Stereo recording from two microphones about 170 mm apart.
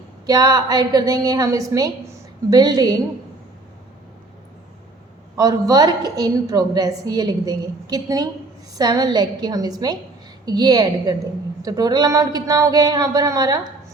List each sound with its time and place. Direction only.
0.3 s a woman's voice: 20° right (ahead or behind)
5.4 s a woman's voice: 20° right (ahead or behind)